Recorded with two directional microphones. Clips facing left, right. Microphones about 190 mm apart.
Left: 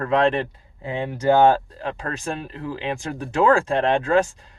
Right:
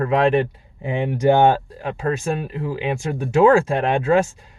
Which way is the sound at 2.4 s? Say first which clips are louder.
Right 4 dB; 10° right (ahead or behind).